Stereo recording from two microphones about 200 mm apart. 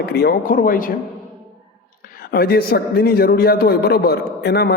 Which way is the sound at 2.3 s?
50° left (ahead or behind).